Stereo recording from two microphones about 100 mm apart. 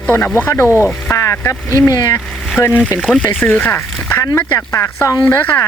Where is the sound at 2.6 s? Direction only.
25° left (ahead or behind).